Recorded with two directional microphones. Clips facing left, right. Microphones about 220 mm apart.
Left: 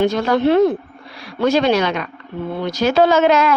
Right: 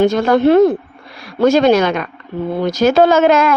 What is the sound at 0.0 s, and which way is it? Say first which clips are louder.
A woman's voice: right 4 dB; 50° right (ahead or behind).